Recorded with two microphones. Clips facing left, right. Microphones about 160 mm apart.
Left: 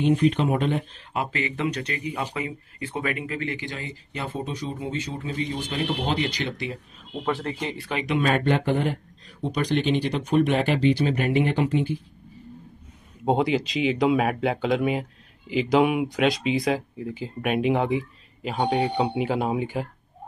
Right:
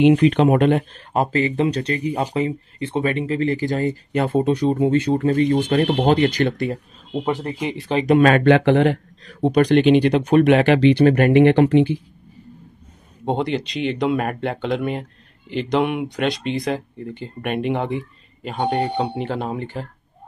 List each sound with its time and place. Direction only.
0.0 s speech: 85° right; by 0.8 s 65° right (ahead or behind)
1.1 s speech: 40° right (ahead or behind)
7.2 s speech: 15° right (ahead or behind)
7.9 s speech: 35° right (ahead or behind)
8.2 s speech: 90° right; by 11.9 s 70° right (ahead or behind)
13.2 s speech: centre (ahead or behind)